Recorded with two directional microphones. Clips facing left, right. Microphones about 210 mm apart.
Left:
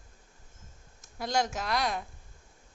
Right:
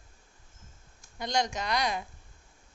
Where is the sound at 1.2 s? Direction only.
5° left (ahead or behind).